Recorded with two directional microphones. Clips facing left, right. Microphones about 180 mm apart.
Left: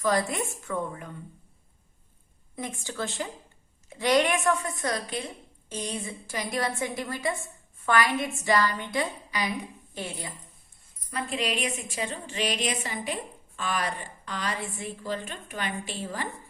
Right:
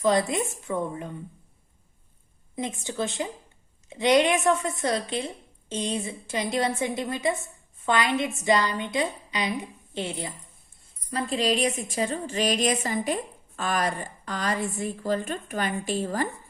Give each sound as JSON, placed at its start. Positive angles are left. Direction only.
{"t": 0.0, "sound": "a woman's voice", "side_deg": -20}
{"t": 2.6, "sound": "a woman's voice", "side_deg": -20}